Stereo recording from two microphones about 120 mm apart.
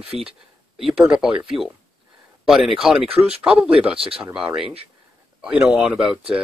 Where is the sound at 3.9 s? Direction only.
50° right (ahead or behind).